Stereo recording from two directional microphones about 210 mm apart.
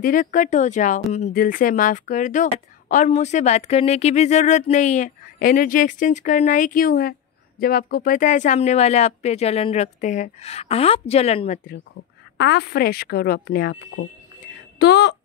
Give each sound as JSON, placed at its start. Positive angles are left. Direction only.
{"t": 0.0, "sound": "speech", "side_deg": 40}
{"t": 12.4, "sound": "speech", "side_deg": 50}
{"t": 14.8, "sound": "speech", "side_deg": 55}